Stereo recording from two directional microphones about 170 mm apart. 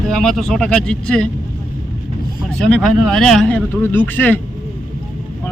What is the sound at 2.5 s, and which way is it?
Speech, 5° left (ahead or behind).